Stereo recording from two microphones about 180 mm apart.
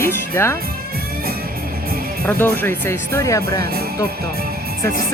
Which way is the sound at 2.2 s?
10° left (ahead or behind).